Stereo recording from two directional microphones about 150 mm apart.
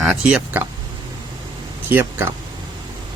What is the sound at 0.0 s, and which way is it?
Speech, 10° right (ahead or behind).